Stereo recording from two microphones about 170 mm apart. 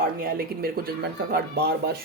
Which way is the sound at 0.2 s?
60° right (ahead or behind).